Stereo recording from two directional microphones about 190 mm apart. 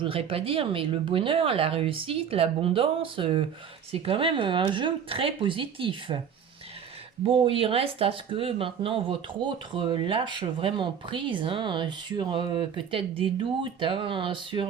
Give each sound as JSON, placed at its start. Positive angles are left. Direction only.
{"t": 0.0, "sound": "speech", "side_deg": -30}
{"t": 7.3, "sound": "speech", "side_deg": -30}